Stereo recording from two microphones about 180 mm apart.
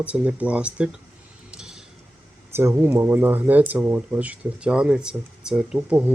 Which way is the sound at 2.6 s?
10° right (ahead or behind).